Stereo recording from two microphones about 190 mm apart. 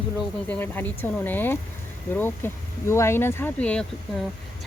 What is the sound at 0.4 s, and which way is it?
Speech, 10° left (ahead or behind).